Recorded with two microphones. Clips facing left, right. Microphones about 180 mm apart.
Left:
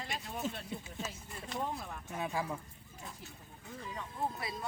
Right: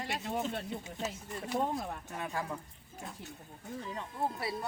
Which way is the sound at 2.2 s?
5° left (ahead or behind).